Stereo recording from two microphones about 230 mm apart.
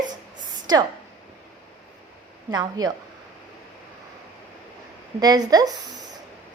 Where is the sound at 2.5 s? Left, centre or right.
Centre.